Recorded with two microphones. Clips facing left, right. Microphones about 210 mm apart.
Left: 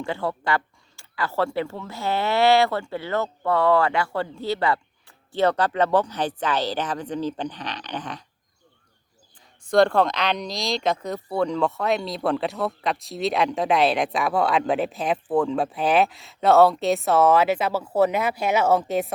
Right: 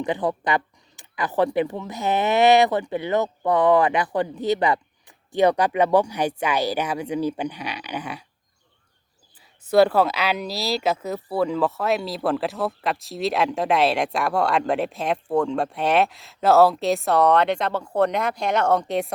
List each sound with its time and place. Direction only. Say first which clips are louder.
0.0 s speech: right 3 dB; 15° right (ahead or behind)
9.4 s speech: right 1 dB; 5° right (ahead or behind)